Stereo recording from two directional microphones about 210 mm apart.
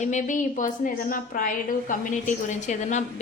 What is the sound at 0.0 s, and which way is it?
A woman's voice, 35° left (ahead or behind).